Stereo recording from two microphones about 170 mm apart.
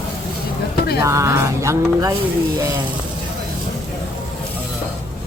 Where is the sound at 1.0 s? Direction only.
15° right (ahead or behind).